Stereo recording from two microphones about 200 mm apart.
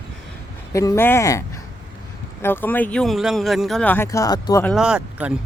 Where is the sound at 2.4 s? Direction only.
10° left (ahead or behind).